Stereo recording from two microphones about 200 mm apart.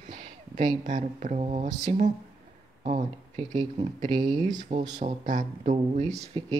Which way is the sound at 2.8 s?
35° right (ahead or behind).